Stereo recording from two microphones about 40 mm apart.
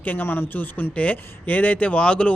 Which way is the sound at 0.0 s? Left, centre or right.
Left.